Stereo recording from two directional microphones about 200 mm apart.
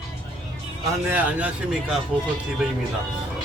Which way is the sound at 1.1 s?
5° right (ahead or behind).